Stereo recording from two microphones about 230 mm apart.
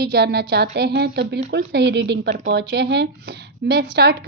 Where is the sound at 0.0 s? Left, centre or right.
Right.